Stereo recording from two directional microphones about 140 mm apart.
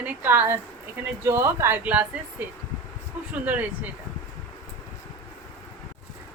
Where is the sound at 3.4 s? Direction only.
10° right (ahead or behind).